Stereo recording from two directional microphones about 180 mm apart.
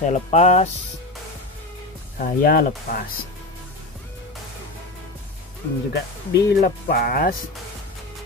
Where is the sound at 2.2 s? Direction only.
50° left (ahead or behind).